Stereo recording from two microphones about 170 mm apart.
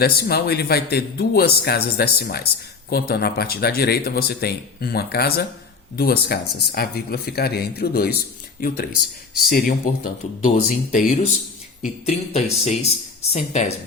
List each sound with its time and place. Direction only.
0.0 s speech: 65° left (ahead or behind)
11.8 s speech: 40° left (ahead or behind)